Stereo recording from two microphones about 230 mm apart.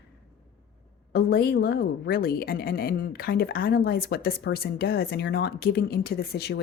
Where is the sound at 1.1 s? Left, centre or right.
Left.